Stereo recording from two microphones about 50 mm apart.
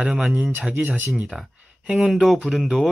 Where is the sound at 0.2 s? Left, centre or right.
Centre.